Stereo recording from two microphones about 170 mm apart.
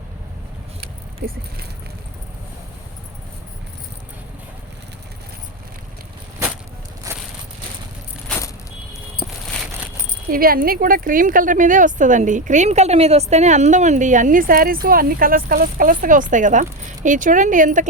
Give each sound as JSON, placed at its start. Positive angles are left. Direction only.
{"t": 0.8, "sound": "keys jangling", "side_deg": -65}
{"t": 7.1, "sound": "crushing", "side_deg": -20}
{"t": 9.2, "sound": "a sound", "side_deg": 0}
{"t": 10.2, "sound": "speech", "side_deg": -60}